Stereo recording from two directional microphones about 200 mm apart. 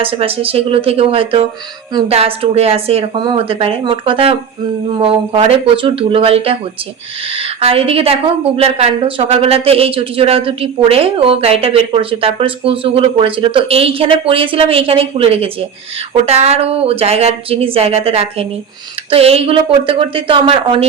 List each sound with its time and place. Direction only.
0.0 s a woman's voice: 30° right (ahead or behind)